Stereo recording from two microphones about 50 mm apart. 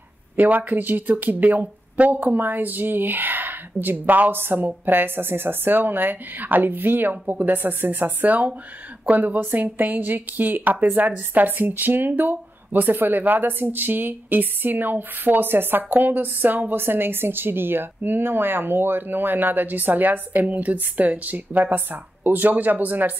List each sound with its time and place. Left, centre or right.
0.4 s speech: right